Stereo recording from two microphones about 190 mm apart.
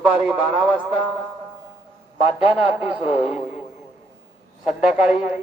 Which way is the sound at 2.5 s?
10° right (ahead or behind).